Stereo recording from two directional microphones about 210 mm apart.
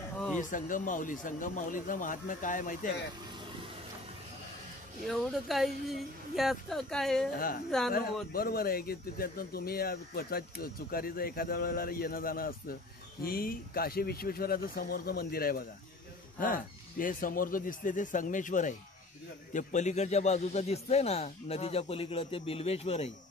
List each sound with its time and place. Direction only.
0.4 s speech: 40° left (ahead or behind)
5.0 s speech: centre (ahead or behind)
7.3 s a man's voice: 45° left (ahead or behind)